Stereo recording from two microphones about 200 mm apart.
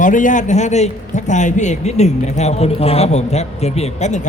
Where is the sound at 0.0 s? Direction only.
40° left (ahead or behind).